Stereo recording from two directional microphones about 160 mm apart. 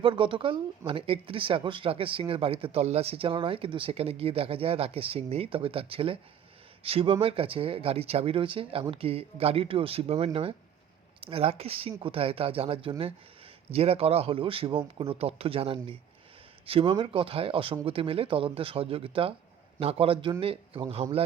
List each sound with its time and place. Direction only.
0.0 s speech: 30° right (ahead or behind)